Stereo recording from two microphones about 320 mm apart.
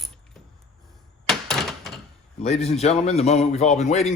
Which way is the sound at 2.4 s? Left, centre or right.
Centre.